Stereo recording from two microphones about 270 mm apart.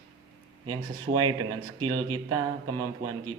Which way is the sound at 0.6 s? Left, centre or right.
Centre.